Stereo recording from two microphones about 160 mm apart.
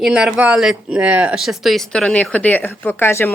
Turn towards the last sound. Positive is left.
turn(degrees=15)  # may be behind; listen again after turning